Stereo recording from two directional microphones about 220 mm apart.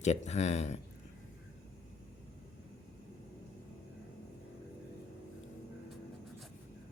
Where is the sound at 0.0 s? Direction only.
30° left (ahead or behind).